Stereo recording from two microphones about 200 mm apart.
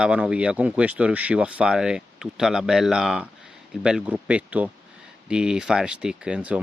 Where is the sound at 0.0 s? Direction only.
5° right (ahead or behind).